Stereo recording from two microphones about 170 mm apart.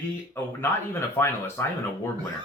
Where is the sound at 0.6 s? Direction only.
15° left (ahead or behind).